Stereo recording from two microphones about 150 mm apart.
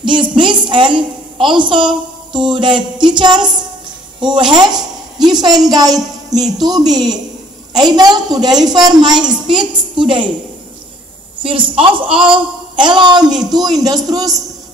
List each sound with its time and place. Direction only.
0.0 s a sound: 30° right (ahead or behind)
4.2 s a woman's voice: 30° right (ahead or behind)
11.4 s a woman's voice: 35° right (ahead or behind)